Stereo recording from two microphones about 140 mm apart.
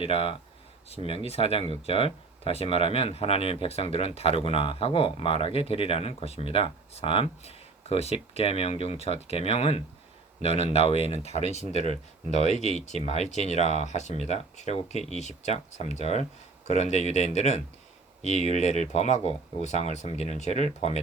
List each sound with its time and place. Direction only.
0.0 s speech: 40° left (ahead or behind)